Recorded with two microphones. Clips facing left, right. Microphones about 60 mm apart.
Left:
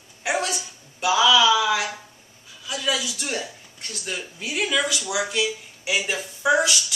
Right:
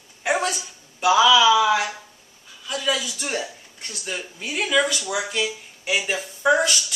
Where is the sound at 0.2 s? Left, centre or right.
Centre.